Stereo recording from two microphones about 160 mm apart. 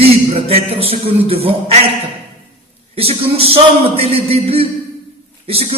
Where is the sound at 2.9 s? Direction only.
40° right (ahead or behind).